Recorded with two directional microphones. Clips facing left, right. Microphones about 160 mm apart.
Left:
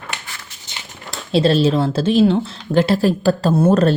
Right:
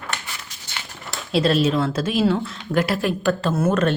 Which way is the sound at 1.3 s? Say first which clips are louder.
Left 4 dB; 30° left (ahead or behind).